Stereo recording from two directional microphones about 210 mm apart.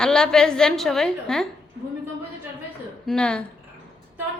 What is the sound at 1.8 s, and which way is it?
Speech, 55° right (ahead or behind).